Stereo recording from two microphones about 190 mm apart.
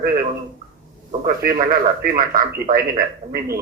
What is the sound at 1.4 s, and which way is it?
Speech, 50° right (ahead or behind).